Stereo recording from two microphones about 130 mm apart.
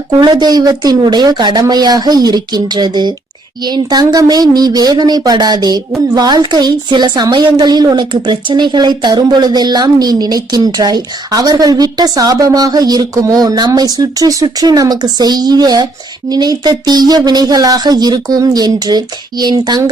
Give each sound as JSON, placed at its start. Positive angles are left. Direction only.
{"t": 0.1, "sound": "a woman's voice", "side_deg": -30}